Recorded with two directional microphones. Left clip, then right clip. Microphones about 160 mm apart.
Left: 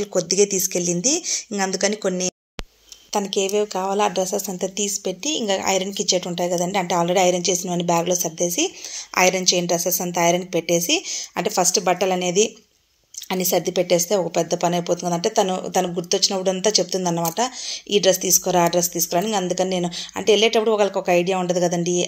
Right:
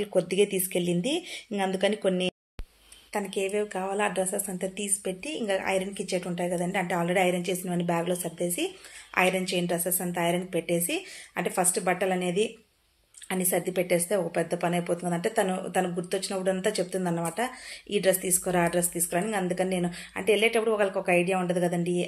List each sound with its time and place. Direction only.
0.3 s speech: 25° left (ahead or behind)
3.6 s speech: 30° left (ahead or behind)
4.7 s a woman's voice: 45° left (ahead or behind)
7.5 s speech: 30° left (ahead or behind)